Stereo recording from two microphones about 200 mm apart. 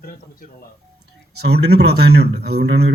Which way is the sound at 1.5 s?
55° right (ahead or behind).